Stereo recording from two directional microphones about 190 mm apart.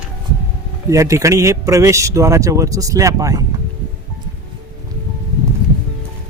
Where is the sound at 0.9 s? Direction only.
15° right (ahead or behind).